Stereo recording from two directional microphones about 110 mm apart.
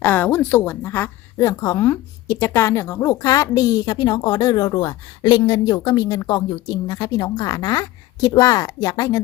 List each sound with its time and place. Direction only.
0.0 s a woman's voice: 15° left (ahead or behind); by 9.2 s 35° left (ahead or behind)